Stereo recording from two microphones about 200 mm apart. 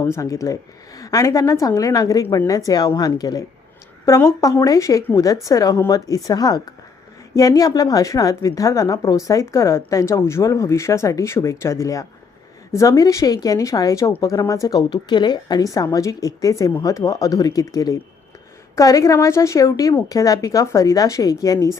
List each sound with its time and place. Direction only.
0.0 s a woman's voice: 15° left (ahead or behind)